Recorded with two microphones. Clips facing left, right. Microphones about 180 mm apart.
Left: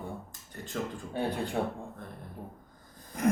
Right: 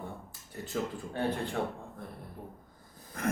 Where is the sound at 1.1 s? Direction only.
15° left (ahead or behind).